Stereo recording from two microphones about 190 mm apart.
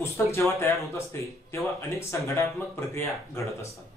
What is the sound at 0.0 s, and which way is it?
Speech, 15° left (ahead or behind).